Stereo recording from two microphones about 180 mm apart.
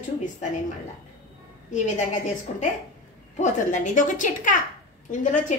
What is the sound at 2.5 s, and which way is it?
A woman's voice, 45° left (ahead or behind).